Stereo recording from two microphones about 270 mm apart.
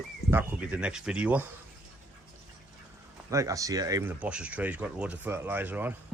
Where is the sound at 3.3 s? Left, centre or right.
Centre.